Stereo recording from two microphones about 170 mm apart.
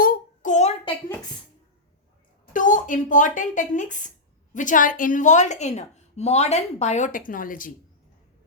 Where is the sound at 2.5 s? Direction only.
50° left (ahead or behind).